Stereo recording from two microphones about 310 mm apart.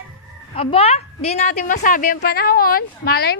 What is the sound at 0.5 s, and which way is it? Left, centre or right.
A woman's voice, centre.